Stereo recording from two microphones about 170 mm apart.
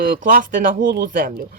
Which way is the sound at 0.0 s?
50° right (ahead or behind).